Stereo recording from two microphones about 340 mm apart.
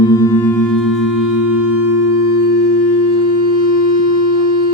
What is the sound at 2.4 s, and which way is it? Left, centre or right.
Music, left.